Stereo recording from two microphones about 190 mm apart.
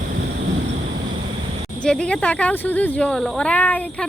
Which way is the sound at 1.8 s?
5° left (ahead or behind).